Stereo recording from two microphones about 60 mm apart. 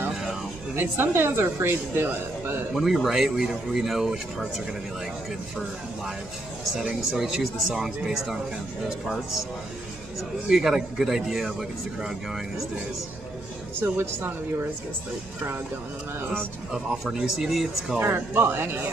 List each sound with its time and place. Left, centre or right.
0.7 s speech: right
2.7 s speech: centre
6.8 s speech: centre
10.5 s speech: centre
17.0 s speech: centre
17.9 s speech: right